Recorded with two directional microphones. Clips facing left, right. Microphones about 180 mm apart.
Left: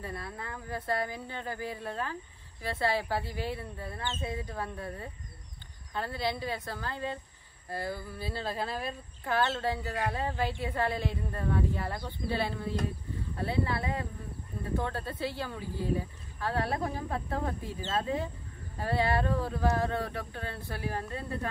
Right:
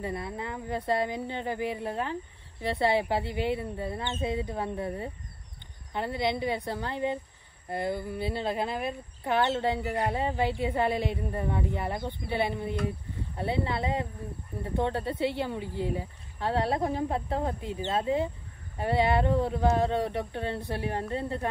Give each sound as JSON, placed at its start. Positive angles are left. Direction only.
{"t": 0.0, "sound": "speech", "side_deg": -20}